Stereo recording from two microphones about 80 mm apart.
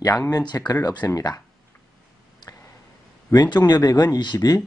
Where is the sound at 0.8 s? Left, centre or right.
Left.